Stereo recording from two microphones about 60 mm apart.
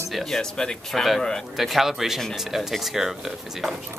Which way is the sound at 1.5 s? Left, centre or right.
Centre.